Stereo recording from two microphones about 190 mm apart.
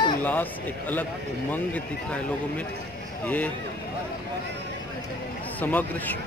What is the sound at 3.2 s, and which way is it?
Speech, 10° left (ahead or behind).